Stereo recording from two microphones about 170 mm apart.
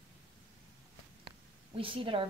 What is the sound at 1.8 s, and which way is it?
Speech, 30° right (ahead or behind).